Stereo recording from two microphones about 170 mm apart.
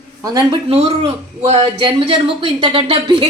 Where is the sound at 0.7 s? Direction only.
35° right (ahead or behind).